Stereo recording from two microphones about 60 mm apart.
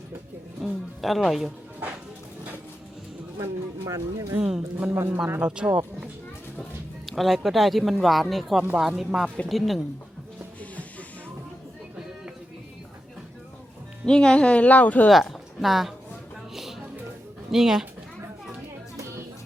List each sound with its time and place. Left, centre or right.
0.6 s speech: centre
3.8 s speech: right
4.4 s speech: centre
4.9 s speech: right
5.4 s speech: centre
7.0 s speech: centre
14.0 s speech: centre
15.1 s speech: centre
16.6 s music: centre
17.5 s speech: centre